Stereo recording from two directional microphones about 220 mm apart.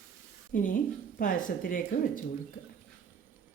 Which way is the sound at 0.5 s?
35° left (ahead or behind).